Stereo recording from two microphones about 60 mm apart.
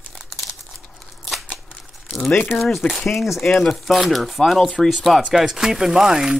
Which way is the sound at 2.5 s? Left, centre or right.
Centre.